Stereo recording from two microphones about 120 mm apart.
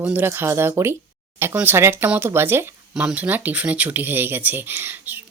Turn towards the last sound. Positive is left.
turn(degrees=-20)  # may be behind; listen again after turning